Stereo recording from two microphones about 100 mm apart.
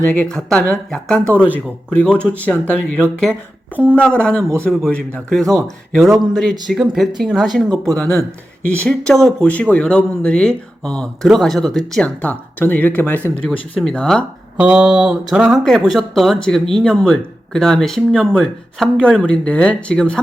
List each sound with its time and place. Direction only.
0.0 s speech: 15° left (ahead or behind)
5.3 s speech: centre (ahead or behind)
12.0 s speech: 15° left (ahead or behind)
13.4 s speech: 10° left (ahead or behind)
14.6 s a sound: 10° right (ahead or behind)
15.5 s speech: centre (ahead or behind)